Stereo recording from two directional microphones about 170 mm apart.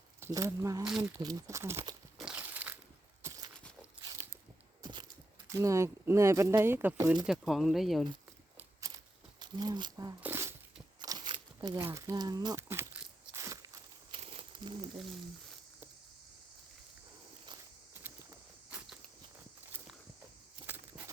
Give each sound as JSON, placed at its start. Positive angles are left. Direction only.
{"t": 0.2, "sound": "speech", "side_deg": -20}
{"t": 2.1, "sound": "crumpling", "side_deg": -5}
{"t": 4.8, "sound": "heart sounds", "side_deg": -25}
{"t": 5.5, "sound": "speech", "side_deg": -15}
{"t": 7.3, "sound": "speech", "side_deg": 0}
{"t": 9.4, "sound": "speech", "side_deg": -25}
{"t": 10.2, "sound": "a sound", "side_deg": -10}
{"t": 11.0, "sound": "a sound", "side_deg": -25}
{"t": 11.9, "sound": "speech", "side_deg": -20}
{"t": 13.3, "sound": "walk", "side_deg": -20}
{"t": 14.1, "sound": "a sound", "side_deg": -35}